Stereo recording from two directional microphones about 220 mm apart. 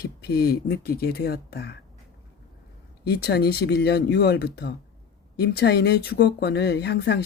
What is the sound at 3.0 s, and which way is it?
Speech, 45° left (ahead or behind).